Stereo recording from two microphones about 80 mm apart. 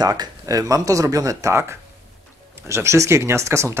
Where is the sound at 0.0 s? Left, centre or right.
Right.